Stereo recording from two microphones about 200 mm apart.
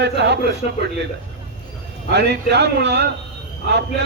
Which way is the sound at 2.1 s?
55° right (ahead or behind).